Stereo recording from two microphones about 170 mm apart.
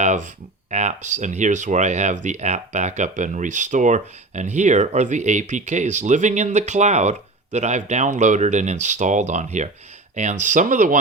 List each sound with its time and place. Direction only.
0.0 s speech: 45° right (ahead or behind)